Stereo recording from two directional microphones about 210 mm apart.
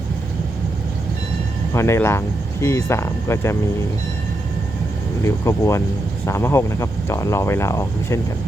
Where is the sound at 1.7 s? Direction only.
15° left (ahead or behind).